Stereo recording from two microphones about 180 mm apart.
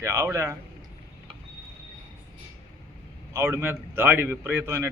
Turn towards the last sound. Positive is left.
turn(degrees=-10)  # may be behind; listen again after turning